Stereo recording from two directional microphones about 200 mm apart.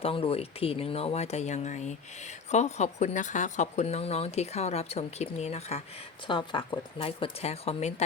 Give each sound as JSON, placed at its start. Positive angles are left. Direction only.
{"t": 0.0, "sound": "speech", "side_deg": 25}